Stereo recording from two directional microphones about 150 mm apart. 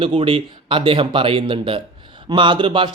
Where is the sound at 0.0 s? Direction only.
40° right (ahead or behind).